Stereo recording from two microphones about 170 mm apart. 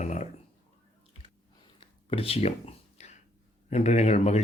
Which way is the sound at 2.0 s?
35° left (ahead or behind).